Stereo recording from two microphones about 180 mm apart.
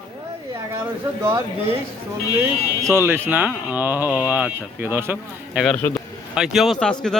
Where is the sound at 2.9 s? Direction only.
15° right (ahead or behind).